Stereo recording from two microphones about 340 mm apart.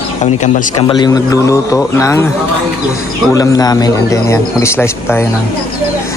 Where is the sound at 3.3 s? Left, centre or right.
Centre.